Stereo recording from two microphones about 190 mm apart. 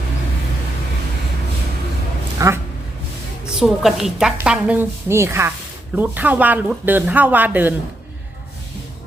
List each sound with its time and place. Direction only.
2.4 s a man's voice: 15° right (ahead or behind)
3.5 s a woman's voice: centre (ahead or behind)